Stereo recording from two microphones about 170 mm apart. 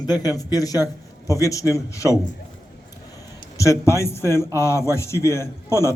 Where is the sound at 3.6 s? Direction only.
15° left (ahead or behind).